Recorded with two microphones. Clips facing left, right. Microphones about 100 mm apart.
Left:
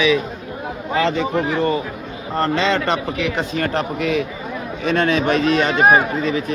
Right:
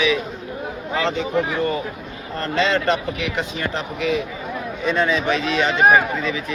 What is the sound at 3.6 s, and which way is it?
Speech, 50° left (ahead or behind).